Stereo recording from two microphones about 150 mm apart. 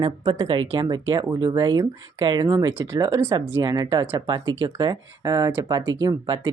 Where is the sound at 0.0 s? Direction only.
35° right (ahead or behind).